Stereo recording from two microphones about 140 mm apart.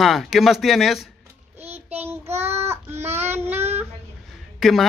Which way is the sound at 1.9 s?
15° right (ahead or behind).